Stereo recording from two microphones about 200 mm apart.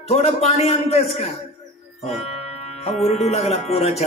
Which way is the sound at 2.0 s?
30° left (ahead or behind).